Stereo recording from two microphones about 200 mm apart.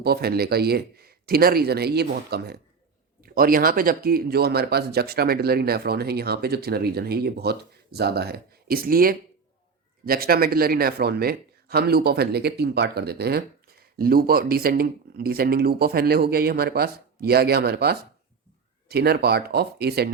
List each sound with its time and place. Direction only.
0.0 s speech: 50° right (ahead or behind)